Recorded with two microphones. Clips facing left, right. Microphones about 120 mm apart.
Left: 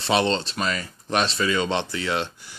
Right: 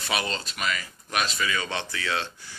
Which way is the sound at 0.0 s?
30° left (ahead or behind).